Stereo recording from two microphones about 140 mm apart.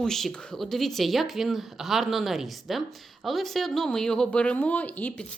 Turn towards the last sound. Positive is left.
turn(degrees=10)  # may be behind; listen again after turning